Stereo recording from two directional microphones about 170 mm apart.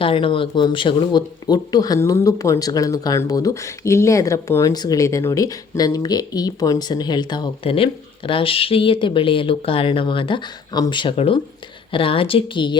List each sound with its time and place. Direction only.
0.0 s speech: 30° left (ahead or behind)